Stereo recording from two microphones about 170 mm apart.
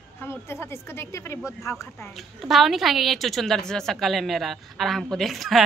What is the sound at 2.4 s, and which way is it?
A woman's voice, centre (ahead or behind).